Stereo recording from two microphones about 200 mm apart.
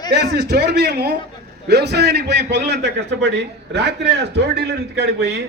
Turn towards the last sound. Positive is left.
turn(degrees=-55)  # may be behind; listen again after turning